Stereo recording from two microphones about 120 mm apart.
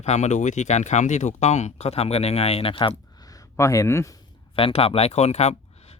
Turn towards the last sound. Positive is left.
turn(degrees=65)  # may be behind; listen again after turning